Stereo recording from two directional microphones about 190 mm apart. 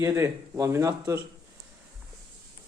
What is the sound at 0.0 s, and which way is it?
Speech, 15° right (ahead or behind).